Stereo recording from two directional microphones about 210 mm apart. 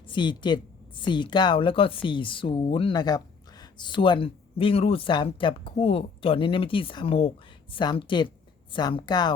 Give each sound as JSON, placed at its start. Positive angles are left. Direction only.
{"t": 0.1, "sound": "speech", "side_deg": 20}